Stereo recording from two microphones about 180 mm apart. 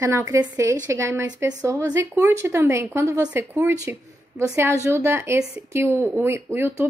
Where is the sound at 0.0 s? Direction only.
15° right (ahead or behind).